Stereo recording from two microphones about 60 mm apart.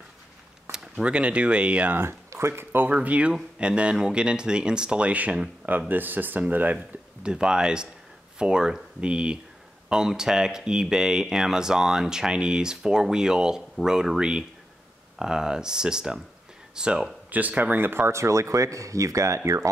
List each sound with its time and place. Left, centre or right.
0.7 s speech: centre
2.0 s speech: right
2.9 s speech: right
7.2 s speech: centre
17.3 s speech: right